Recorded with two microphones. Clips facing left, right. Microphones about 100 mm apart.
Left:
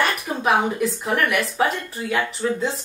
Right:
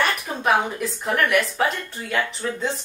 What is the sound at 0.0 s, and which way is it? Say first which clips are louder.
Speech: left 1 dB; centre (ahead or behind).